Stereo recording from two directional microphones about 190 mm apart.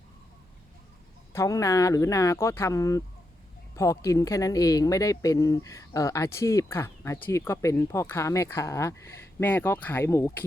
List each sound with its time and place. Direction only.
1.3 s speech: 15° left (ahead or behind)